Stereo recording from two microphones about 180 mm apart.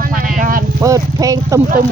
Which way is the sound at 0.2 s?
50° right (ahead or behind).